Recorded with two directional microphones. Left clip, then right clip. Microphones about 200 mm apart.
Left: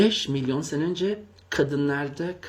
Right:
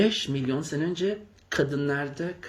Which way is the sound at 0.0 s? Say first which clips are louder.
Left 3 dB; 20° left (ahead or behind).